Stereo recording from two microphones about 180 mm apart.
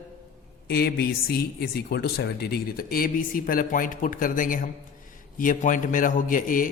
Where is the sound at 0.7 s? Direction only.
60° left (ahead or behind).